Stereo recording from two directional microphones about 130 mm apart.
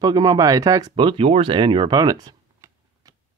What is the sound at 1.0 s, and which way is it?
Speech, 40° right (ahead or behind).